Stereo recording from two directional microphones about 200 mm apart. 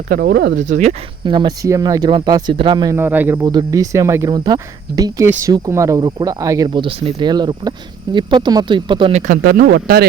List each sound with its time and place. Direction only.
0.1 s speech: 50° right (ahead or behind)
0.6 s speech: 35° right (ahead or behind)
1.2 s speech: 25° right (ahead or behind)
9.2 s speech: 45° right (ahead or behind)